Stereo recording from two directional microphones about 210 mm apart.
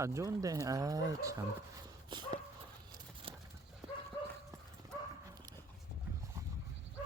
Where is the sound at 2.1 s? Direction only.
20° right (ahead or behind).